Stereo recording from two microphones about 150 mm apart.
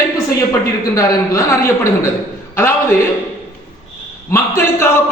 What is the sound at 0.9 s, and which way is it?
A woman's voice, 20° left (ahead or behind).